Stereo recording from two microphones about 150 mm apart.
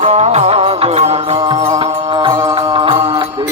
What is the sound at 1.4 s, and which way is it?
Mantra, 35° right (ahead or behind).